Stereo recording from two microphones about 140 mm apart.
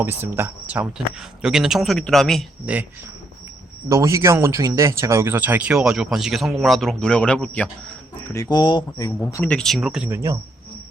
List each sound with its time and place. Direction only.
0.0 s speech: 15° right (ahead or behind); by 2.5 s 5° left (ahead or behind)
3.8 s speech: 20° right (ahead or behind); by 7.7 s 10° left (ahead or behind)
8.3 s speech: 25° left (ahead or behind)
9.1 s speech: 10° left (ahead or behind); by 10.1 s 5° right (ahead or behind)
10.1 s speech: 20° right (ahead or behind)